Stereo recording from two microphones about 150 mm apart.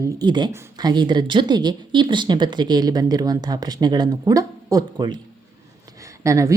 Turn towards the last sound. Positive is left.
turn(degrees=-20)  # may be behind; listen again after turning